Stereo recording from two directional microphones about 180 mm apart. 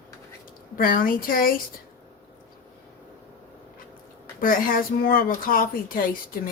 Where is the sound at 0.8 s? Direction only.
50° left (ahead or behind).